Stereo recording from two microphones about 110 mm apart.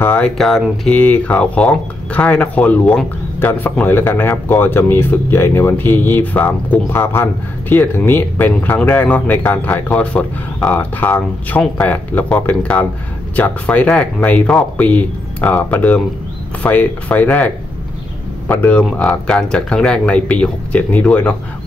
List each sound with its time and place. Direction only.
0.0 s a sound: 15° left (ahead or behind)
0.4 s speech: centre (ahead or behind)
0.9 s speech: 15° left (ahead or behind)
18.5 s speech: 15° left (ahead or behind)